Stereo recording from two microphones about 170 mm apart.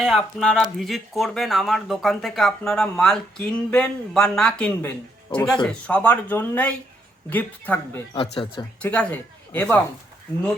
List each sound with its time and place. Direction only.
0.0 s speech: centre (ahead or behind)
8.1 s speech: 30° left (ahead or behind)
8.8 s speech: 5° left (ahead or behind)